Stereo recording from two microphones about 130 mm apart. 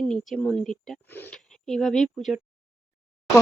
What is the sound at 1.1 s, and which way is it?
Speech, 15° left (ahead or behind).